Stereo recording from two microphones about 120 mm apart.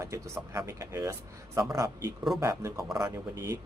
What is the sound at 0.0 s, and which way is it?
A man's voice, 25° right (ahead or behind).